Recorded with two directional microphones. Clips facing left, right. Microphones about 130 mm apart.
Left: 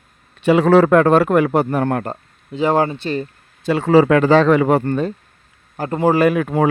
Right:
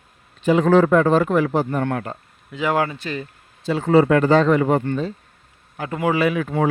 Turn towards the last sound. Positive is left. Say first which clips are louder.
# left 4 dB
turn(degrees=55)  # may be behind; listen again after turning